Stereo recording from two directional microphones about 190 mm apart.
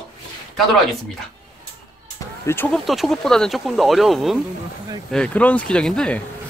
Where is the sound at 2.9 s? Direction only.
Centre (ahead or behind).